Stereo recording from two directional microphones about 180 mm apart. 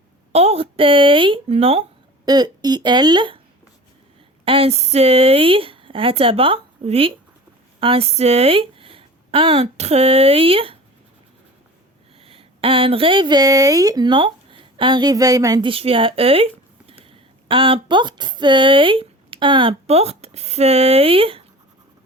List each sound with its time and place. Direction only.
0.3 s speech: 35° right (ahead or behind)
4.4 s speech: 30° right (ahead or behind)
12.2 s speech: 30° right (ahead or behind)